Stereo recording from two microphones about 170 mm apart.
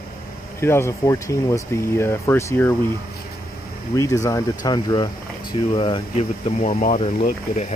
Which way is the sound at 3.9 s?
20° left (ahead or behind).